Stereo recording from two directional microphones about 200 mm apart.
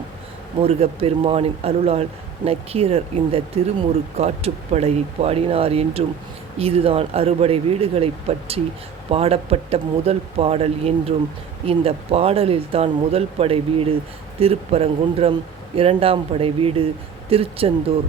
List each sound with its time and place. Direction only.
0.6 s speech: 30° right (ahead or behind)